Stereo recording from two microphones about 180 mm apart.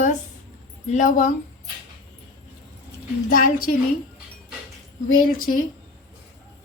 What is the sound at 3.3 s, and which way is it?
Speech, 50° left (ahead or behind).